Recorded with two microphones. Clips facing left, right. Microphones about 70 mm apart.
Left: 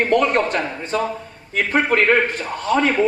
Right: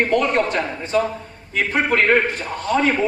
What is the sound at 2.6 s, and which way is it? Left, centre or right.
Speech, right.